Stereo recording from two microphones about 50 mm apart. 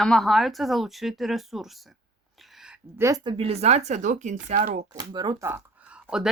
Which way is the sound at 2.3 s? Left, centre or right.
Centre.